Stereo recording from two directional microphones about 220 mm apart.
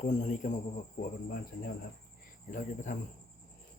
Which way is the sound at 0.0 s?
35° left (ahead or behind).